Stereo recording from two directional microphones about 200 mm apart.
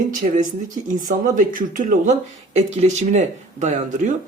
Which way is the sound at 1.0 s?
40° right (ahead or behind).